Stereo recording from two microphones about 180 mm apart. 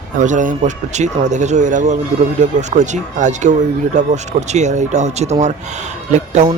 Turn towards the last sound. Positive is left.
turn(degrees=-40)  # may be behind; listen again after turning